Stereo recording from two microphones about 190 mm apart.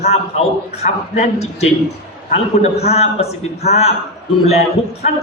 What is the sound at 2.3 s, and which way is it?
A man's voice, 35° left (ahead or behind).